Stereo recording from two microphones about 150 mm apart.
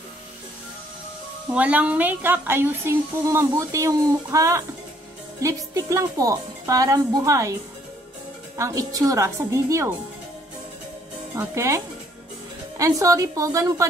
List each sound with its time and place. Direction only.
1.5 s a woman's voice: 10° right (ahead or behind)
8.5 s a woman's voice: 20° right (ahead or behind)
11.3 s a woman's voice: 20° right (ahead or behind)